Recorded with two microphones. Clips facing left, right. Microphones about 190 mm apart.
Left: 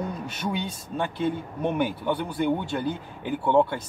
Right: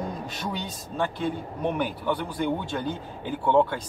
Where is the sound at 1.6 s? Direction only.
15° left (ahead or behind).